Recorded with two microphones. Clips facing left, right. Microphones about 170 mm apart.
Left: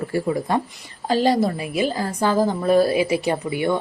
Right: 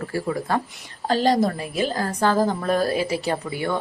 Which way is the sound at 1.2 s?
10° left (ahead or behind).